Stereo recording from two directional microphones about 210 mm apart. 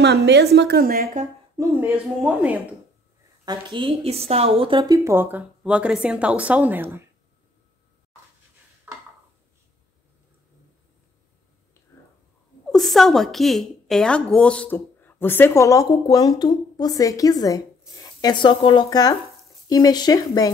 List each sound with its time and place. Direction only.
0.0 s a woman's voice: 55° right (ahead or behind)
1.6 s a woman's voice: 10° right (ahead or behind)
3.4 s a woman's voice: 25° right (ahead or behind)
8.9 s dishes: 5° right (ahead or behind)
12.7 s a woman's voice: centre (ahead or behind); by 20.5 s 15° left (ahead or behind)